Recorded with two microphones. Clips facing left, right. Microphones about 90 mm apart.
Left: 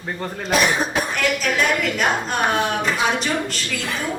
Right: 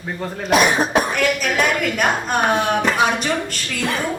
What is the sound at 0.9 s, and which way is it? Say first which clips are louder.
A woman's voice: right 4 dB; 50° right (ahead or behind).